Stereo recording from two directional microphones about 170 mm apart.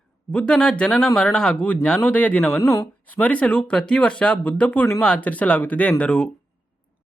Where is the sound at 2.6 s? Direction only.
20° left (ahead or behind).